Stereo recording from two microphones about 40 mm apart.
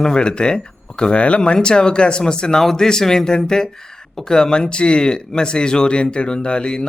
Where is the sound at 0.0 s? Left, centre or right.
Centre.